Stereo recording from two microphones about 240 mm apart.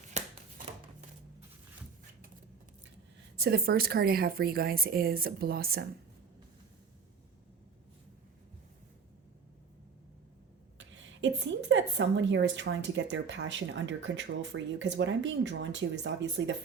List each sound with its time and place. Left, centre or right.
0.1 s a sound: right
3.3 s speech: right
10.8 s a woman's voice: right